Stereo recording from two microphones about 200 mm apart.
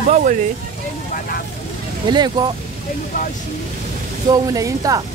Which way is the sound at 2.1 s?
20° right (ahead or behind).